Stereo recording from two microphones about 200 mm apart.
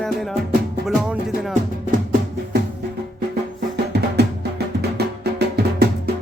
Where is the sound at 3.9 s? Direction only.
55° right (ahead or behind).